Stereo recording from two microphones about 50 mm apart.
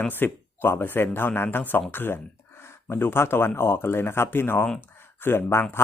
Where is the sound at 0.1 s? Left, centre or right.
Left.